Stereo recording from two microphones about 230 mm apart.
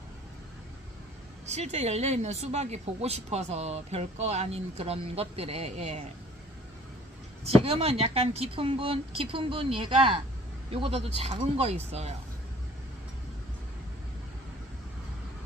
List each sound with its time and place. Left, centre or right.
1.5 s speech: right
7.4 s speech: right